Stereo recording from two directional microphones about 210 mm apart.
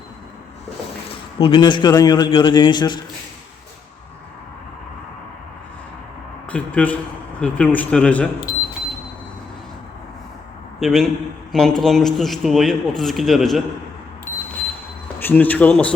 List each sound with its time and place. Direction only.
1.4 s a man's voice: 25° left (ahead or behind)
6.5 s a man's voice: 5° left (ahead or behind)
10.8 s a man's voice: centre (ahead or behind)
15.2 s a man's voice: 10° left (ahead or behind)